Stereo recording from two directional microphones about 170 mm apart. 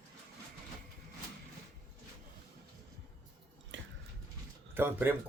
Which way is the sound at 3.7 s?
90° right.